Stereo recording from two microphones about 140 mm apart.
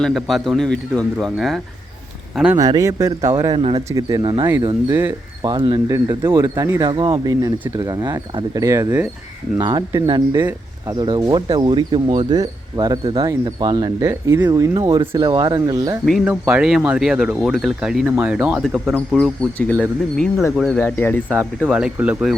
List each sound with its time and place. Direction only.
0.0 s speech: centre (ahead or behind)
2.6 s speech: 25° right (ahead or behind)
3.5 s speech: 40° right (ahead or behind)
3.8 s speech: 25° right (ahead or behind)
4.9 s speech: 15° right (ahead or behind)
5.4 s speech: 30° right (ahead or behind)
9.6 s speech: 35° right (ahead or behind)
10.3 s speech: 20° right (ahead or behind)
10.9 s speech: 30° right (ahead or behind)
14.0 s speech: 15° right (ahead or behind)
16.2 s speech: 10° right (ahead or behind); by 21.2 s 15° left (ahead or behind)
21.6 s speech: 5° right (ahead or behind)